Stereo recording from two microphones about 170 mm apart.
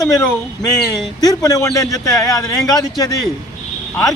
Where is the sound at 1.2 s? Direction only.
20° left (ahead or behind).